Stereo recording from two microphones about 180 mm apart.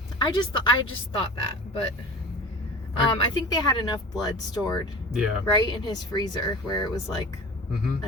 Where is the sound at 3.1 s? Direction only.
25° left (ahead or behind).